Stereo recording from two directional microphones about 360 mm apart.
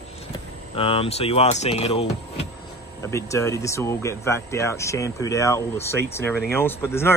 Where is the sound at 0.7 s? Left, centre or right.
Centre.